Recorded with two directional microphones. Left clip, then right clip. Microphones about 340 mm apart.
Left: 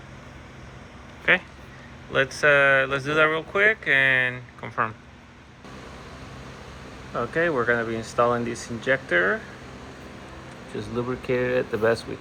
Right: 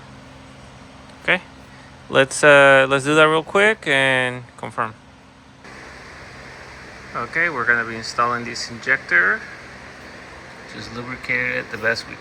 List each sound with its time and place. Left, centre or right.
1.3 s speech: centre
7.1 s speech: centre
10.8 s speech: centre